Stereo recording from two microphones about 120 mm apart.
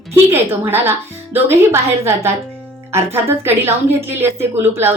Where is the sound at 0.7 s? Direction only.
20° right (ahead or behind).